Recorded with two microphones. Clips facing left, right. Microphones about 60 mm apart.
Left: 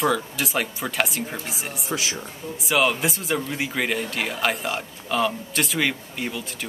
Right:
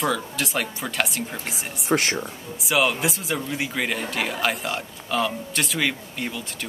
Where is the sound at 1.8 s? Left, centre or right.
Right.